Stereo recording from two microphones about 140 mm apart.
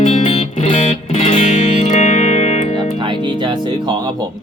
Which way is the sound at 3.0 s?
35° right (ahead or behind).